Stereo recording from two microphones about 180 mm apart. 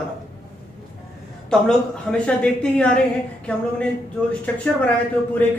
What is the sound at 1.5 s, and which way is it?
A woman's voice, 5° left (ahead or behind).